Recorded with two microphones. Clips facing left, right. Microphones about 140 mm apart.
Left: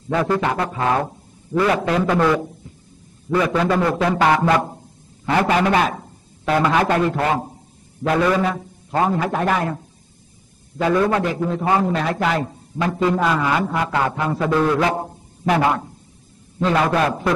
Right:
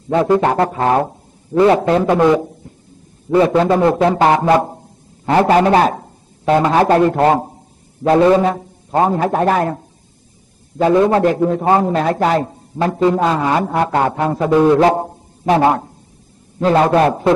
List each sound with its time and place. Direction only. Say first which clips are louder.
0.1 s music: right 6 dB; 25° right (ahead or behind)
0.4 s a man's voice: right 6 dB; 40° right (ahead or behind)
2.1 s music: right 5 dB; 20° right (ahead or behind)
3.3 s music: right 6 dB; 30° right (ahead or behind)
5.2 s a sound: right 6 dB; 35° right (ahead or behind)
6.5 s a man's voice: right 5 dB; 30° right (ahead or behind)
8.0 s a man's voice: right 7 dB; 30° right (ahead or behind)
10.8 s a man's voice: right 6 dB; 30° right (ahead or behind)
11.2 s a man's voice: right 7 dB; 45° right (ahead or behind)
13.0 s music: right 4 dB; 25° right (ahead or behind)
13.4 s a man's voice: right 4 dB; 40° right (ahead or behind)
14.4 s music: right 7 dB; 25° right (ahead or behind)
14.8 s a man's voice: right 7 dB; 40° right (ahead or behind)
15.4 s a man's voice: right 5 dB; 25° right (ahead or behind)